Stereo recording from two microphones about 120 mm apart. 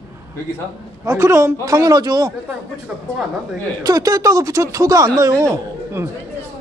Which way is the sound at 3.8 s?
30° right (ahead or behind).